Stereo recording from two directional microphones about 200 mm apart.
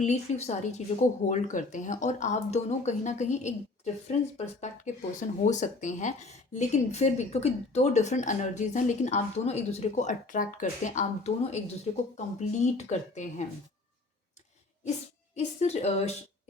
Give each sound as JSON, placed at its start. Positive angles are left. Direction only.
{"t": 0.0, "sound": "speech", "side_deg": 35}
{"t": 15.4, "sound": "speech", "side_deg": 30}